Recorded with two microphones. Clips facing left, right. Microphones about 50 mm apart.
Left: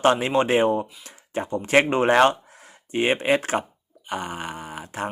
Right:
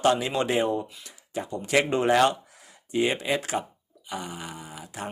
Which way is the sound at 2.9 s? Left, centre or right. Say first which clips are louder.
Left 4 dB; left.